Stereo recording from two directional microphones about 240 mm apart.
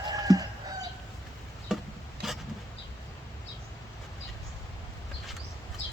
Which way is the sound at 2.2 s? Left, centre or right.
Centre.